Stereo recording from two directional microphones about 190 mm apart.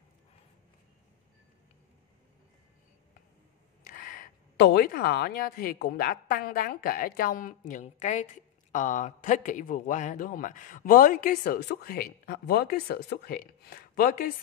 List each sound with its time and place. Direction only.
3.8 s speech: 50° left (ahead or behind)